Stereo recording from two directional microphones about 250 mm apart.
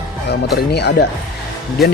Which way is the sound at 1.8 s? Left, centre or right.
Centre.